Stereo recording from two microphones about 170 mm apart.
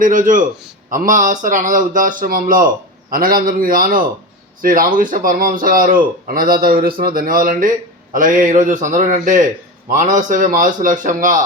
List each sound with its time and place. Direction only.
0.0 s a man's voice: 50° right (ahead or behind)